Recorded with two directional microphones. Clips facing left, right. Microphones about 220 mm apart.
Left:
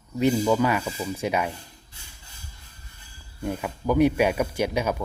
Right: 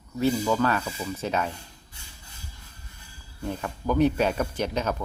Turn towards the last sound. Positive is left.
turn(degrees=10)  # may be behind; listen again after turning